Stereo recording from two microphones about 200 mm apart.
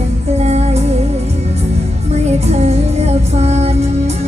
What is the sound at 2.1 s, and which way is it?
Music, 35° right (ahead or behind).